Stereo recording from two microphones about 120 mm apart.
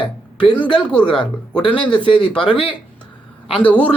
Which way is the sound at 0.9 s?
10° left (ahead or behind).